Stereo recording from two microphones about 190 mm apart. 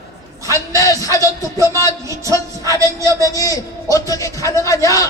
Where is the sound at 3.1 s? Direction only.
20° left (ahead or behind).